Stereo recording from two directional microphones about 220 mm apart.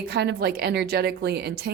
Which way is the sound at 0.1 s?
50° right (ahead or behind).